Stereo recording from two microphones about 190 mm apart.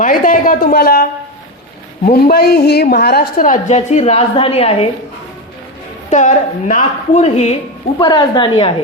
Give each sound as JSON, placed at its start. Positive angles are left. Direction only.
{"t": 0.0, "sound": "a woman's voice", "side_deg": 45}
{"t": 2.0, "sound": "a woman's voice", "side_deg": 55}
{"t": 6.1, "sound": "a woman's voice", "side_deg": 40}
{"t": 7.9, "sound": "a woman's voice", "side_deg": 25}